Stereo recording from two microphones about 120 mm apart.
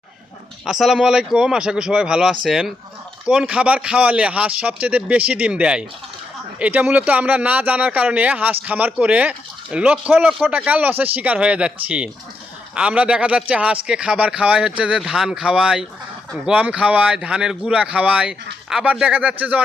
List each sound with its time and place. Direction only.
0.6 s a man's voice: centre (ahead or behind)